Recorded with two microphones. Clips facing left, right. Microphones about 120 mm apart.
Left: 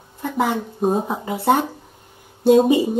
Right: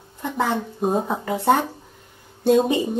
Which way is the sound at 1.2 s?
20° left (ahead or behind).